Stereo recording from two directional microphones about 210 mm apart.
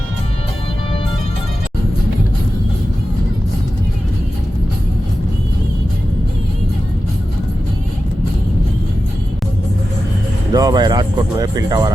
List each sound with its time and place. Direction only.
10.5 s speech: 20° right (ahead or behind)